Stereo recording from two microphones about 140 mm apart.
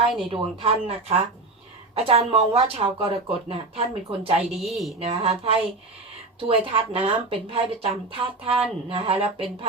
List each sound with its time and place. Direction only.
0.3 s speech: 40° right (ahead or behind)
4.6 s speech: centre (ahead or behind)
4.9 s speech: 45° right (ahead or behind)